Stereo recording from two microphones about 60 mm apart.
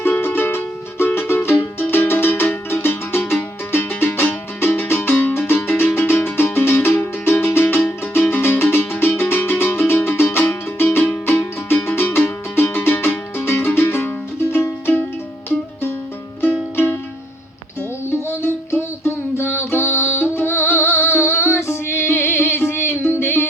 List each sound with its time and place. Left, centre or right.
0.0 s music: left
11.9 s music: left
16.4 s music: left
18.4 s music: left